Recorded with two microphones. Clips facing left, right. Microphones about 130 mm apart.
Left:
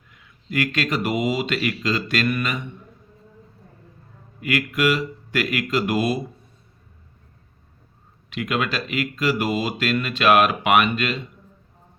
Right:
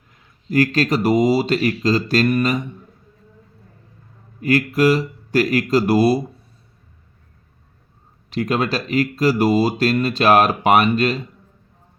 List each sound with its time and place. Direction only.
0.1 s speech: 35° right (ahead or behind)
4.4 s speech: 35° right (ahead or behind)
8.3 s speech: 35° right (ahead or behind)